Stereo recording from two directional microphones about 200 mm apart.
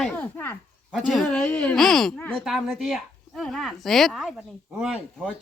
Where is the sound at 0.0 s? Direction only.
5° left (ahead or behind).